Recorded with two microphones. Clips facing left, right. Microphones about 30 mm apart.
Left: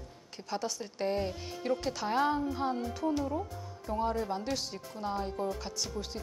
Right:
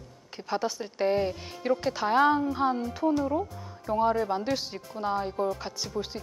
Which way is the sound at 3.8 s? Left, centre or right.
Right.